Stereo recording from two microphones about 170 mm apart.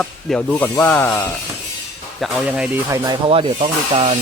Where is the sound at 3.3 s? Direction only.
35° right (ahead or behind).